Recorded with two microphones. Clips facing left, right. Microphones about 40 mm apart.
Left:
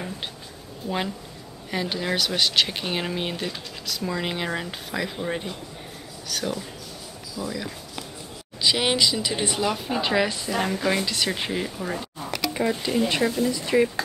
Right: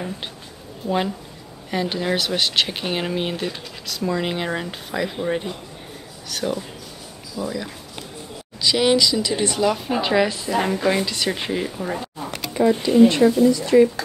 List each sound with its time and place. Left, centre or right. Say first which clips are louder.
0.8 s a woman's voice: right 5 dB; centre
8.5 s speech: right 4 dB; centre
9.7 s a woman's voice: right 4 dB; centre
12.5 s speech: right 10 dB; centre
13.5 s speech: right 7 dB; centre